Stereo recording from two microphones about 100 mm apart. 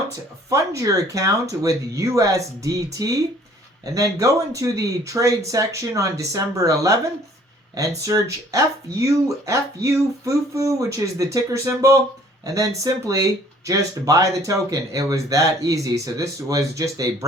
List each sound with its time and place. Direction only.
0.5 s speech: 35° right (ahead or behind)